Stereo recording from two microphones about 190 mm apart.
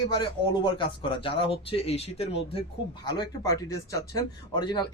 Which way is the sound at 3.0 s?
20° left (ahead or behind).